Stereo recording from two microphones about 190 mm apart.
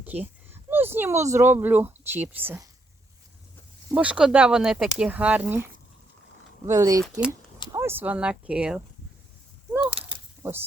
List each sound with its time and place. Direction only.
0.0 s speech: 10° right (ahead or behind)
3.9 s speech: 5° right (ahead or behind)
6.7 s speech: 15° right (ahead or behind)
10.4 s speech: 10° right (ahead or behind)